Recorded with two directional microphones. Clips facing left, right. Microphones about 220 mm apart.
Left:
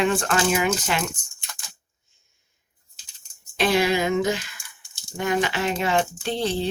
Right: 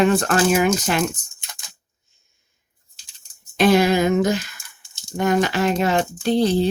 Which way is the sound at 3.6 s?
45° right (ahead or behind).